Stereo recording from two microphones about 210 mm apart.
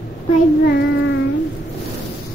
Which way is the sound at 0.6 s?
60° left (ahead or behind).